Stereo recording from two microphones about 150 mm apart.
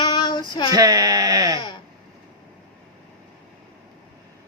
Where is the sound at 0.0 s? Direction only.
30° left (ahead or behind).